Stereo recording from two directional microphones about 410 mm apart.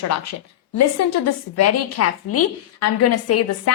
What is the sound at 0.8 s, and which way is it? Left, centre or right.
A woman's voice, left.